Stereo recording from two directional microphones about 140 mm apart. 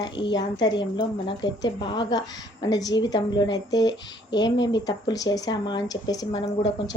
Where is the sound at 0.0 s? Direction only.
30° left (ahead or behind).